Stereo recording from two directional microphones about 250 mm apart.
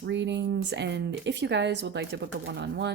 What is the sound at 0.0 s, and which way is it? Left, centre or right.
Speech, right.